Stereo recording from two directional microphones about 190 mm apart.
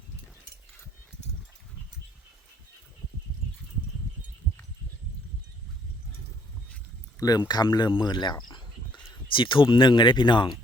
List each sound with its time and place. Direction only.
7.2 s speech: 20° left (ahead or behind)